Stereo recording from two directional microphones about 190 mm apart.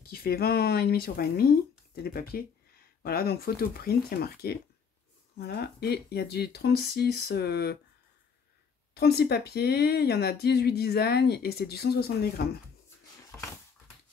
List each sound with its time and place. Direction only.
0.0 s speech: 55° left (ahead or behind)
8.9 s speech: 60° left (ahead or behind)